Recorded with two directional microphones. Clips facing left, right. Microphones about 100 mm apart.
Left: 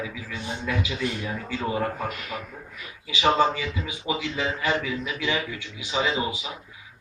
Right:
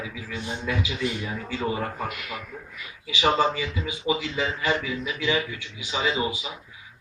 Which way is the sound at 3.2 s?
5° right (ahead or behind).